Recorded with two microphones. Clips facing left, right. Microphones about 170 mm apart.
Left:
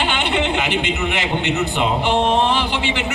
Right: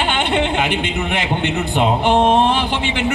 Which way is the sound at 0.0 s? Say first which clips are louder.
Right 2 dB; 50° right (ahead or behind).